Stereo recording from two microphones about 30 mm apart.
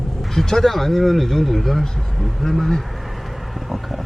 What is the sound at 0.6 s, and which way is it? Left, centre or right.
Speech, centre.